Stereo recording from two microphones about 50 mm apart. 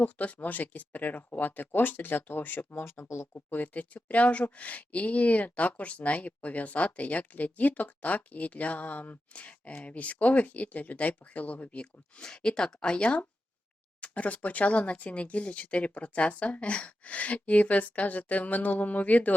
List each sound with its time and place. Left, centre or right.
0.0 s speech: left
3.3 s speech: left